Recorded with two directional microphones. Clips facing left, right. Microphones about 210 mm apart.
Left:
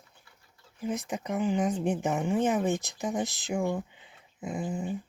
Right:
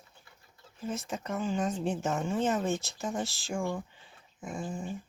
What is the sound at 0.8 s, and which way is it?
Speech, 15° left (ahead or behind).